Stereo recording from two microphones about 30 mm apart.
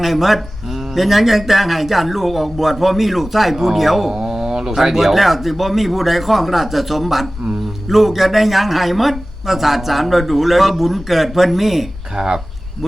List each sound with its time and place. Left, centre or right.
0.0 s speech: centre
4.1 s speech: centre
12.1 s speech: right